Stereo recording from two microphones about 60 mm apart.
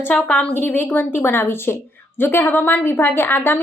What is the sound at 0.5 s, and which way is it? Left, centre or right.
A woman's voice, left.